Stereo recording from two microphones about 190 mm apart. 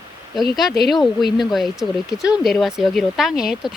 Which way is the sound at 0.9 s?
Centre (ahead or behind).